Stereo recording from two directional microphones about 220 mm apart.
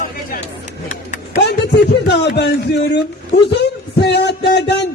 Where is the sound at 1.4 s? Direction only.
50° left (ahead or behind).